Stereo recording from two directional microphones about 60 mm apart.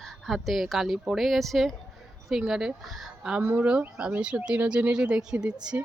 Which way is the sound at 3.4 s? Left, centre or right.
Right.